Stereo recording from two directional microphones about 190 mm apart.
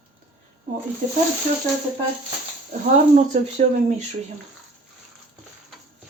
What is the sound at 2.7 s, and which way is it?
Speech, 40° right (ahead or behind).